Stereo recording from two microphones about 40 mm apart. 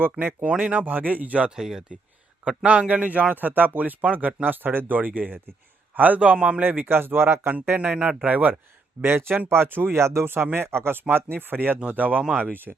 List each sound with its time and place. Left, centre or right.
0.0 s speech: right
0.4 s speech: right
1.5 s speech: centre
2.6 s speech: right
4.4 s speech: right
4.9 s a man's voice: right
6.3 s speech: right
6.6 s speech: right
7.9 s speech: right
8.3 s speech: right
9.0 s speech: right
11.1 s speech: right
11.9 s speech: right
12.4 s speech: right